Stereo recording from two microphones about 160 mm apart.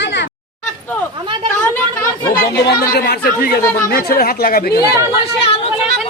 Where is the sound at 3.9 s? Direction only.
70° left (ahead or behind).